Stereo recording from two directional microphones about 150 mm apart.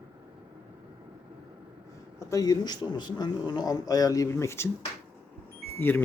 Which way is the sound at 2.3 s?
25° left (ahead or behind).